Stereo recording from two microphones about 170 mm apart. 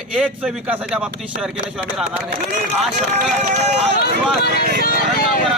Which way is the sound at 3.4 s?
40° right (ahead or behind).